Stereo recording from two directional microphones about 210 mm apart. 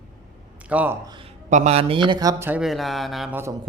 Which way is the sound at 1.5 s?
35° right (ahead or behind).